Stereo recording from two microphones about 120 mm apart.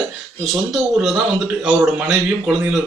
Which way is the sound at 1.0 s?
10° right (ahead or behind).